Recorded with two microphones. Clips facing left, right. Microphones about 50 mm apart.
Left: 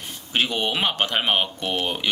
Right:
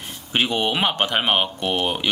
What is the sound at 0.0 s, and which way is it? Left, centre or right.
Speech, centre.